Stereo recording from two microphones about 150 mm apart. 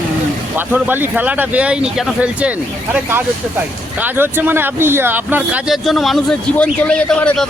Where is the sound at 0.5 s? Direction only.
10° right (ahead or behind).